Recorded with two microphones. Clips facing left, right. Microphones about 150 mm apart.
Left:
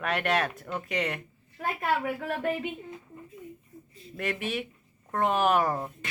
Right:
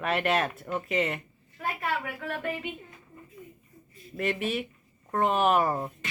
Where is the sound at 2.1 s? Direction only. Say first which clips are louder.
Left 3 dB; 45° left (ahead or behind).